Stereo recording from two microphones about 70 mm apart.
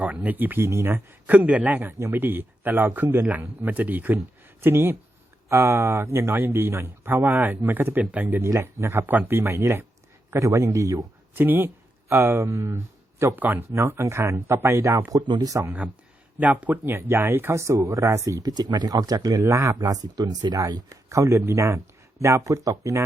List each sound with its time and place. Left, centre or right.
0.0 s a man's voice: right
8.4 s speech: right
9.0 s a man's voice: right
9.4 s speech: right
11.3 s speech: right
12.4 s speech: right
12.7 s a sound: right
13.3 s a man's voice: right
13.7 s speech: right
15.1 s speech: right
15.6 s a man's voice: right
19.4 s speech: right
19.8 s speech: right
20.6 s speech: right